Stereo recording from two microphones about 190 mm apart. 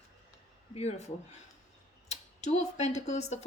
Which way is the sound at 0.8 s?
35° left (ahead or behind).